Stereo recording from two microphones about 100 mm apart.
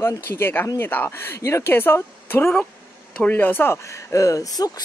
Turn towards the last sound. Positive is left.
turn(degrees=35)  # may be behind; listen again after turning